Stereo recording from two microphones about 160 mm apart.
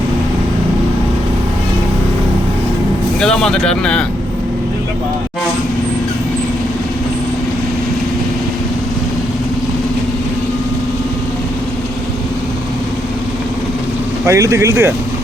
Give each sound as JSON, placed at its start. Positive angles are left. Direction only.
{"t": 3.2, "sound": "speech", "side_deg": 5}
{"t": 14.3, "sound": "speech", "side_deg": -20}